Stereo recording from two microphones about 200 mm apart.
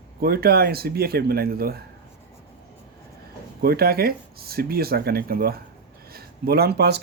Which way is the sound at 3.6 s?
50° right (ahead or behind).